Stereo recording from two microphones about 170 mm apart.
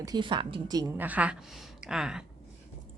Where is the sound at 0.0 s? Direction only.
25° right (ahead or behind).